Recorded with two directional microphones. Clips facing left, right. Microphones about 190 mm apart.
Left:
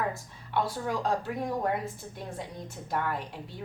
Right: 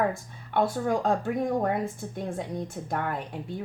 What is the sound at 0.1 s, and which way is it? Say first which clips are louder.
Speech: right 2 dB; 50° right (ahead or behind).